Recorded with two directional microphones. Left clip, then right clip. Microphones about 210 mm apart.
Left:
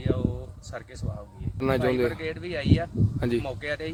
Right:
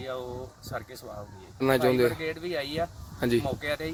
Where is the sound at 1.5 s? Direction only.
5° left (ahead or behind).